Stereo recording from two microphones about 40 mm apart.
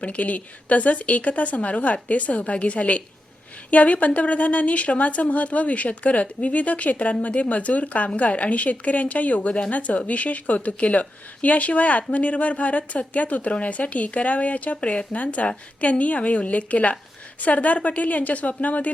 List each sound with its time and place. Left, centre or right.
0.0 s a woman's voice: left